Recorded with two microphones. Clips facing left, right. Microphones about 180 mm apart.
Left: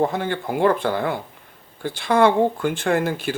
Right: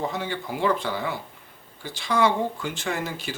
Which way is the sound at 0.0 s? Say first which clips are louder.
Left 7 dB; 55° left (ahead or behind).